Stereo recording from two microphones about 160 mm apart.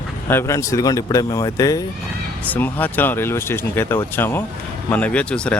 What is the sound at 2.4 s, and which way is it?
A man's voice, 10° left (ahead or behind).